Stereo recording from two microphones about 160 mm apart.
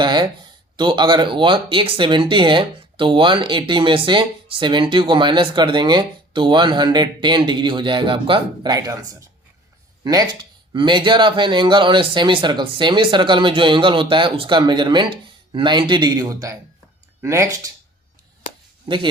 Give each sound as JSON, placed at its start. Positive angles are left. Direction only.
{"t": 0.0, "sound": "speech", "side_deg": -30}